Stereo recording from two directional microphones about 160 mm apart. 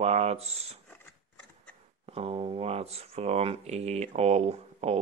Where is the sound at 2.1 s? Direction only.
35° right (ahead or behind).